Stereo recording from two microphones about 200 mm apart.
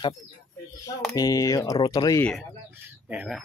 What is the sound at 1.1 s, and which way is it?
Speech, 15° left (ahead or behind).